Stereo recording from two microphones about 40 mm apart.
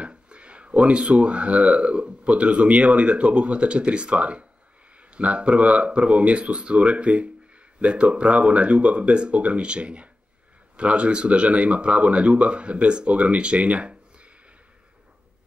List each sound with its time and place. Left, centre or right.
0.0 s speech: right